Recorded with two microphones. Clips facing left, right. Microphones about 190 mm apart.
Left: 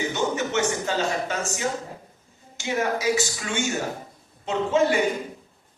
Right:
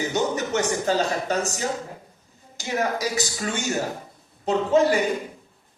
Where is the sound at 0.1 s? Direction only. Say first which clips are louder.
Right 1 dB; 40° right (ahead or behind).